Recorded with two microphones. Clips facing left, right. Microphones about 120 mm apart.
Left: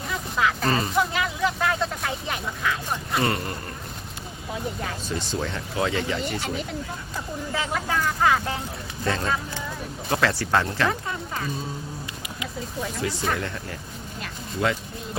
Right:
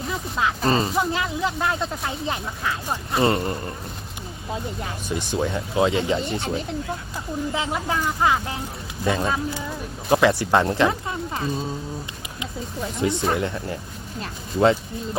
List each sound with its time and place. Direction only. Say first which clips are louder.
0.1 s speech: left 1 dB; 25° right (ahead or behind)
5.0 s speech: right 6 dB; 15° right (ahead or behind)
7.5 s speech: left 1 dB; 20° right (ahead or behind)
13.0 s speech: right 6 dB; 25° right (ahead or behind)
14.2 s a sound: right 7 dB; 30° right (ahead or behind)